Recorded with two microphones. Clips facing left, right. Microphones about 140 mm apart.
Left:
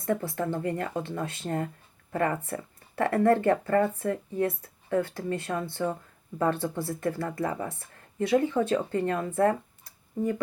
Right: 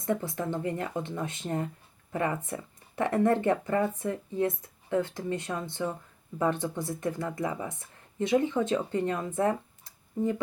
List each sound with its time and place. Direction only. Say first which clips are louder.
0.0 s speech: left 2 dB; 20° right (ahead or behind)